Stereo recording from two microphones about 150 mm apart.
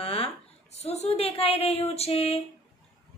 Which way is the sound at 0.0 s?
40° left (ahead or behind).